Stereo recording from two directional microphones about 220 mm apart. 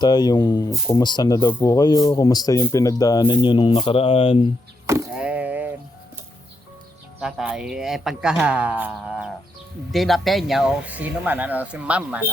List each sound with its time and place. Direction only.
0.0 s speech: 20° left (ahead or behind)
4.9 s a sound: 10° right (ahead or behind)
7.2 s speech: 5° right (ahead or behind)